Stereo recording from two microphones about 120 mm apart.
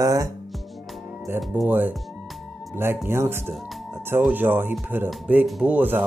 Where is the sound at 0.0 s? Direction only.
30° right (ahead or behind).